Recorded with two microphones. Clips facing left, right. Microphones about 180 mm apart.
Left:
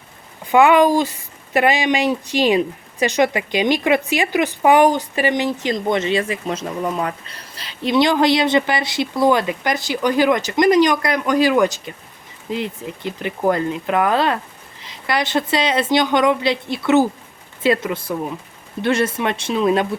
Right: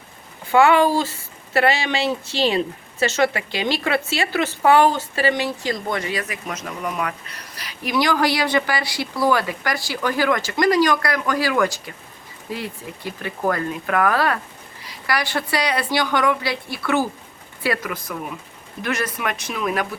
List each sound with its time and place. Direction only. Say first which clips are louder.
0.5 s speech: left 3 dB; 15° left (ahead or behind)